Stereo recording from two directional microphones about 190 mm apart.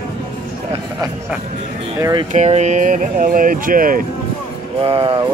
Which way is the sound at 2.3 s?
35° right (ahead or behind).